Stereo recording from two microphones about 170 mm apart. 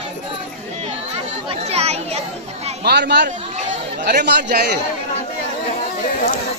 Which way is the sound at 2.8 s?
75° right (ahead or behind).